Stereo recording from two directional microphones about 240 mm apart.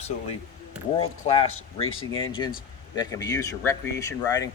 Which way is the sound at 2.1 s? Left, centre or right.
Left.